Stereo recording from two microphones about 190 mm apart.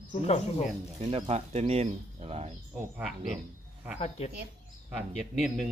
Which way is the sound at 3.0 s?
5° right (ahead or behind).